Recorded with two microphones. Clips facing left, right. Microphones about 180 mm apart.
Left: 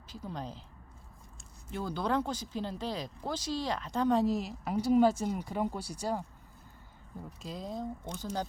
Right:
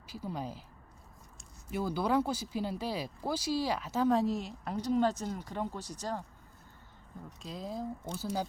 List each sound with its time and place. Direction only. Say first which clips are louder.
0.1 s speech: right 2 dB; 10° right (ahead or behind)
1.7 s speech: right 2 dB; 10° right (ahead or behind); by 6.2 s 10° left (ahead or behind)
7.3 s speech: even; centre (ahead or behind)